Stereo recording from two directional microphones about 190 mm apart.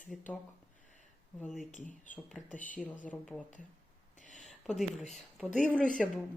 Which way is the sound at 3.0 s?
5° left (ahead or behind).